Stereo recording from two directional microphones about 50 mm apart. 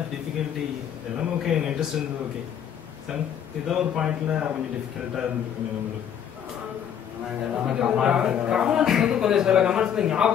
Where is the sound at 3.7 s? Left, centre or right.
Centre.